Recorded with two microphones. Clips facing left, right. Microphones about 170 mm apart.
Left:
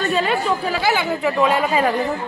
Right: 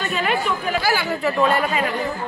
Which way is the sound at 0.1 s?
30° left (ahead or behind).